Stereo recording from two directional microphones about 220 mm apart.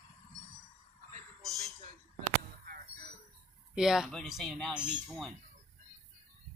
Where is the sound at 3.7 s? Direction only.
Centre (ahead or behind).